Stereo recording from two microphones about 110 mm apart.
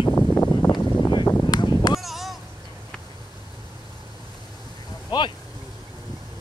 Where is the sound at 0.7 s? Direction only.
40° left (ahead or behind).